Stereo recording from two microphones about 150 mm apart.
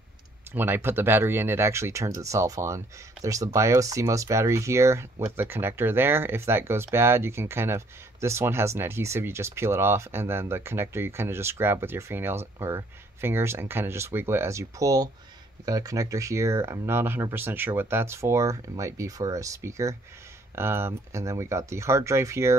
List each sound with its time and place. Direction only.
0.6 s speech: 15° right (ahead or behind)